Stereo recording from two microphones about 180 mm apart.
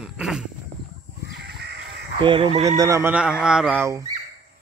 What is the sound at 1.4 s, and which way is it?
Crow, 65° right (ahead or behind).